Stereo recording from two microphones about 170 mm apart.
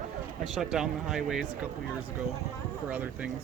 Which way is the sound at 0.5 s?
5° right (ahead or behind).